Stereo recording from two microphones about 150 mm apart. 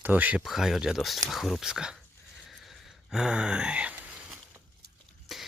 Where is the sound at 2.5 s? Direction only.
Centre (ahead or behind).